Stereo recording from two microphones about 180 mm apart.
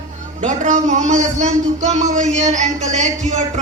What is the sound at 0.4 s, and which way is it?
A woman's voice, 40° right (ahead or behind).